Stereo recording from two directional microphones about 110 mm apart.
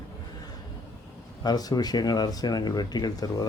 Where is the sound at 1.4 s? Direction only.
35° left (ahead or behind).